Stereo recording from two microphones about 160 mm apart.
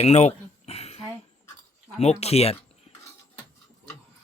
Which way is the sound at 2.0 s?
40° left (ahead or behind).